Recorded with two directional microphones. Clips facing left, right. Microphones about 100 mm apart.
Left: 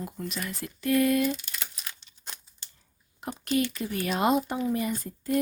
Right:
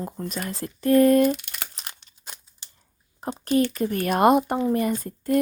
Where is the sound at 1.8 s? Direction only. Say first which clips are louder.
Right 2 dB; 65° right (ahead or behind).